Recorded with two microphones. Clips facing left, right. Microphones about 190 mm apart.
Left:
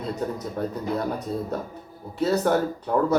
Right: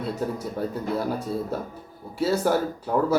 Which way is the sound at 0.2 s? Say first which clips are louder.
Even; 5° right (ahead or behind).